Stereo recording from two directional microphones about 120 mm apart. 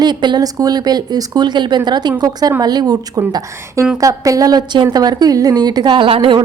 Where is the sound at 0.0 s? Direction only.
40° right (ahead or behind).